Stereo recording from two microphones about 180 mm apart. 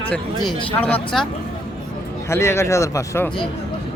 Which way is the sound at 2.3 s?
15° left (ahead or behind).